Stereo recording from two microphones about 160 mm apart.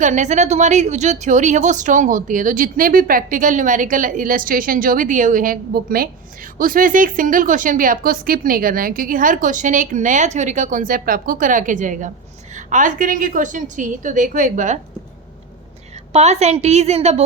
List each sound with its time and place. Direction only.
0.0 s a woman's voice: 50° right (ahead or behind)
16.1 s a woman's voice: 45° right (ahead or behind)